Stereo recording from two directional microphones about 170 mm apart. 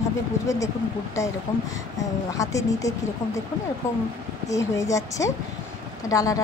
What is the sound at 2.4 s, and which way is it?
Speech, 20° left (ahead or behind).